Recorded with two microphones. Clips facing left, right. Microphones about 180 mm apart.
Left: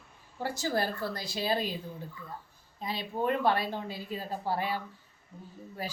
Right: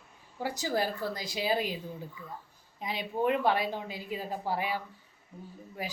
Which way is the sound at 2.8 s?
15° right (ahead or behind).